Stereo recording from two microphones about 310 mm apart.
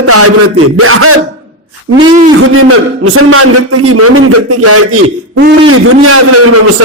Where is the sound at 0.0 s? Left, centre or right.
Right.